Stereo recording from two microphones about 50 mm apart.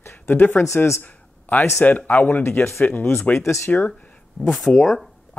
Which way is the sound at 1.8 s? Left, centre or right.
Left.